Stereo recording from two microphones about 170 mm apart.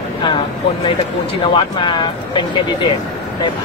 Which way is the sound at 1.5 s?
30° left (ahead or behind).